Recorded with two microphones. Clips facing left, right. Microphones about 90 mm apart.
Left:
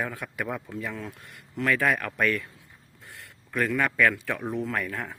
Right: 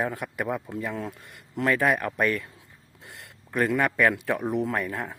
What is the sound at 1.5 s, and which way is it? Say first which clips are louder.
Speech: right 1 dB; 20° right (ahead or behind).